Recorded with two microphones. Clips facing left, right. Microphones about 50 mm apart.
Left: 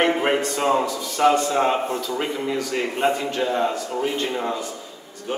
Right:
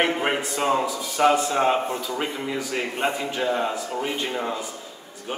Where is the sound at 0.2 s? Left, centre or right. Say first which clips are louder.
Left 3 dB; centre.